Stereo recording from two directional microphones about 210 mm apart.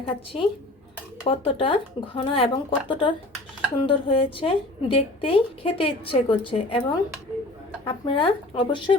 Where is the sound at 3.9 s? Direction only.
25° left (ahead or behind).